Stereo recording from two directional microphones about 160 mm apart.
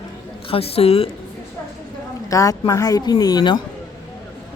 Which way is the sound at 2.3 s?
20° left (ahead or behind).